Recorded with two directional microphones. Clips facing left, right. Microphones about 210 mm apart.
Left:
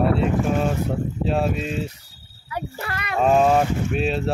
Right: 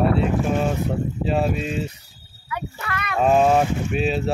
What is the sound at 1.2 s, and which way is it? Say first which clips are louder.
Speech: even; centre (ahead or behind).